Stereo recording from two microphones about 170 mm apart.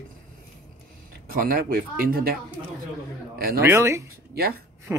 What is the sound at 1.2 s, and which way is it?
Speech, 60° right (ahead or behind).